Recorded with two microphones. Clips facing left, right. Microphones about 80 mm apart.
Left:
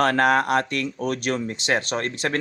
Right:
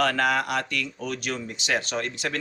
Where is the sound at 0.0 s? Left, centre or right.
Left.